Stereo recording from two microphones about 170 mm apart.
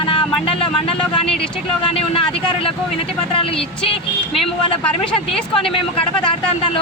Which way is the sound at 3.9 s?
35° left (ahead or behind).